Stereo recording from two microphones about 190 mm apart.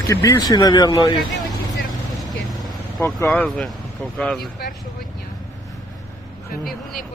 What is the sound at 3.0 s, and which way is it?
Speech, 10° left (ahead or behind).